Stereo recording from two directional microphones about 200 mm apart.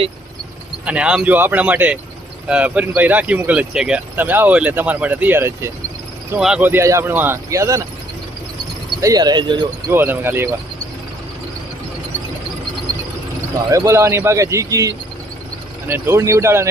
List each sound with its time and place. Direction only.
0.9 s speech: 5° right (ahead or behind)
9.0 s speech: 20° right (ahead or behind)
9.9 s speech: 10° right (ahead or behind)
13.7 s speech: 15° right (ahead or behind)